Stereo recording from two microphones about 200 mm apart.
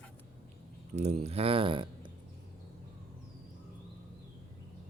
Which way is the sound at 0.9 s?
35° right (ahead or behind).